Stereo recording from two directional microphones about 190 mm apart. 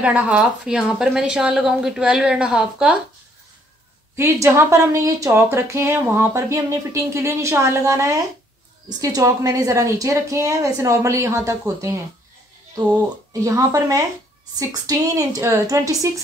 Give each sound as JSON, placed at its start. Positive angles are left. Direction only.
{"t": 0.0, "sound": "a woman's voice", "side_deg": -5}
{"t": 4.2, "sound": "speech", "side_deg": -15}
{"t": 13.3, "sound": "speech", "side_deg": -15}